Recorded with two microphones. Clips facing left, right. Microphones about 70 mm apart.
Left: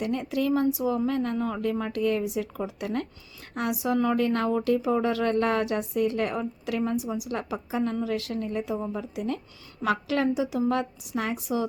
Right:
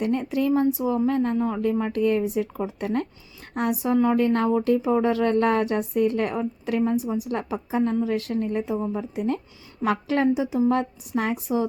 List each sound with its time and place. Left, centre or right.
0.0 s a woman's voice: right
1.8 s a woman's voice: right